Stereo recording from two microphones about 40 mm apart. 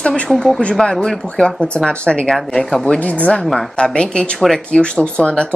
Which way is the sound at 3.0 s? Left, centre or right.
Left.